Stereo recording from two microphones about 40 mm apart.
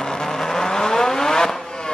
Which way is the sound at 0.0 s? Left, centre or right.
Centre.